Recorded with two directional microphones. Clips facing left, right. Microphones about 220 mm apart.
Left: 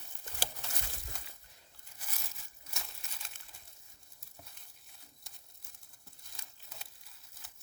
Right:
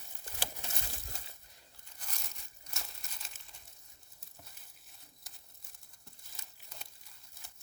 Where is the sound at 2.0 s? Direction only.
5° left (ahead or behind).